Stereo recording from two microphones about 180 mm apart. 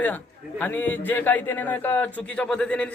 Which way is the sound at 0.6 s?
10° left (ahead or behind).